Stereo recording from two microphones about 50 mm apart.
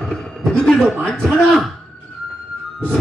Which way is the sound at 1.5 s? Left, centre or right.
Centre.